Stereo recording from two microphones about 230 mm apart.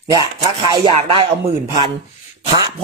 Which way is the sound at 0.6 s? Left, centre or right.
Right.